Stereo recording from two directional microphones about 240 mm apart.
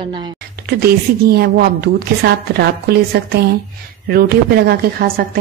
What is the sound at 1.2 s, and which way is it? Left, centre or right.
Speech, right.